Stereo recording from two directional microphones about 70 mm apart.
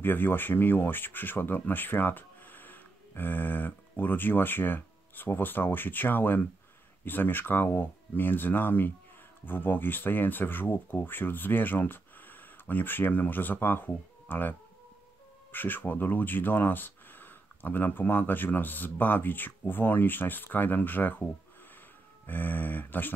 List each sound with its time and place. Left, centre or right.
0.0 s speech: left
15.5 s speech: left